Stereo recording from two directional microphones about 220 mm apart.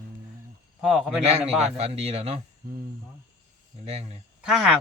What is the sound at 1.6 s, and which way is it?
Speech, 30° right (ahead or behind).